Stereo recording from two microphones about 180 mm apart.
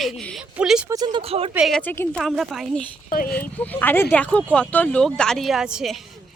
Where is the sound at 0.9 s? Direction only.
20° right (ahead or behind).